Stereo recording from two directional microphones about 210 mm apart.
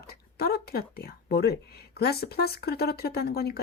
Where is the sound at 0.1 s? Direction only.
45° left (ahead or behind).